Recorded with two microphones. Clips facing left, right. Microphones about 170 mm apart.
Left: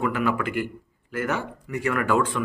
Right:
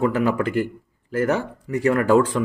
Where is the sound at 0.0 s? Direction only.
35° right (ahead or behind).